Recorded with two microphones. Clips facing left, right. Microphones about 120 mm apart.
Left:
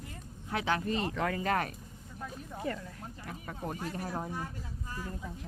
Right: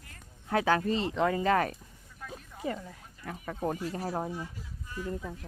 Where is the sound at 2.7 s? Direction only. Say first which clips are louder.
Right 3 dB; 20° right (ahead or behind).